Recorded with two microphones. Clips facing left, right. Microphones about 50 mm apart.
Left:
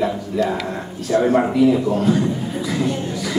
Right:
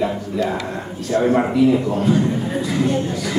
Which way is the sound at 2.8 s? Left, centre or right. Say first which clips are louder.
Right 3 dB; right.